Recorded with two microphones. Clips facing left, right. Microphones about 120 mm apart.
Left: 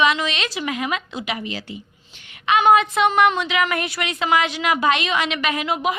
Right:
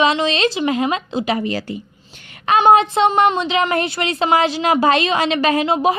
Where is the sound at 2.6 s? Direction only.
25° right (ahead or behind).